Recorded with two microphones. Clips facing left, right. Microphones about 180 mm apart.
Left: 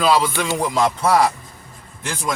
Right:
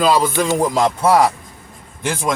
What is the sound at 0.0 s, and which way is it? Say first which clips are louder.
Music: right 2 dB; 45° right (ahead or behind).